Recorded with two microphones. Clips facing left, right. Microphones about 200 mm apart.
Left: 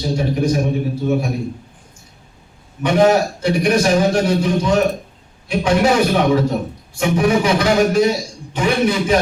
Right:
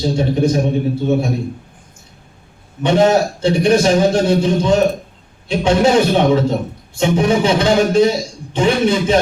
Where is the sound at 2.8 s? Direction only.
25° right (ahead or behind).